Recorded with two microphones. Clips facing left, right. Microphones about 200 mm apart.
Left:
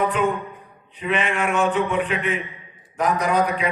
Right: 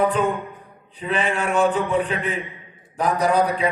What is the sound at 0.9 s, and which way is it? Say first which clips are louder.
A man's voice: even; 35° right (ahead or behind).